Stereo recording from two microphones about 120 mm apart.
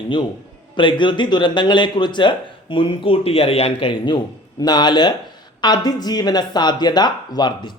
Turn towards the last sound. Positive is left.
turn(degrees=35)  # may be behind; listen again after turning